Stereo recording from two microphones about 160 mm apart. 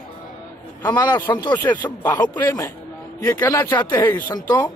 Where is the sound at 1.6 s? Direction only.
10° left (ahead or behind).